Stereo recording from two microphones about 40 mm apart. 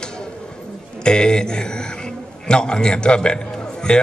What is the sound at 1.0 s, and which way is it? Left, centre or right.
A man's voice, left.